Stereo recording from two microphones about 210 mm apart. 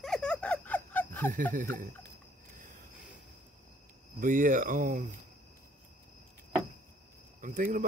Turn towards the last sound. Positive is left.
turn(degrees=-40)  # may be behind; listen again after turning